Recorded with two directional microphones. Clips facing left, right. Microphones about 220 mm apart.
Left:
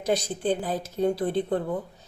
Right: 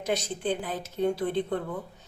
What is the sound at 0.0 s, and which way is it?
Speech, 35° left (ahead or behind).